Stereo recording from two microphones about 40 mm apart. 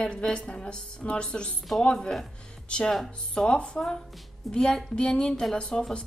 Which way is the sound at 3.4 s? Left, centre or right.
Left.